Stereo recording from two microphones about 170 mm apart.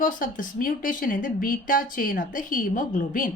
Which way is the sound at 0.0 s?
55° left (ahead or behind).